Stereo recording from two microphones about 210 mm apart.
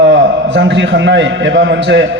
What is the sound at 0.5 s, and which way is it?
A man's voice, 55° right (ahead or behind).